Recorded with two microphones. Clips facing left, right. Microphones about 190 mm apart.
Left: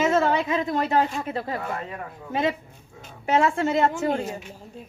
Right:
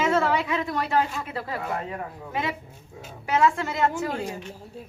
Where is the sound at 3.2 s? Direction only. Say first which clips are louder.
Left 1 dB; 30° left (ahead or behind).